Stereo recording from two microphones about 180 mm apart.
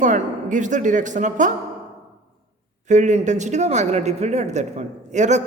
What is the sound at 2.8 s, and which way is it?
Speech, 40° right (ahead or behind).